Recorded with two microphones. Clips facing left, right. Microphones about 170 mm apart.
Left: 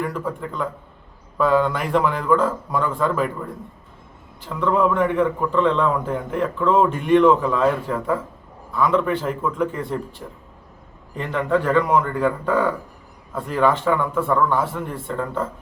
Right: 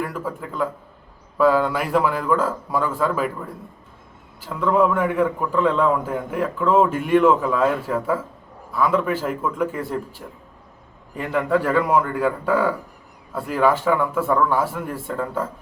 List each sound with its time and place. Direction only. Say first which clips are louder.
0.0 s a man's voice: left 2 dB; 5° right (ahead or behind)
4.4 s a man's voice: right 1 dB; 5° right (ahead or behind)